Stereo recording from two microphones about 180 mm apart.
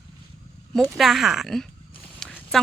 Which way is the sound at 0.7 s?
Centre (ahead or behind).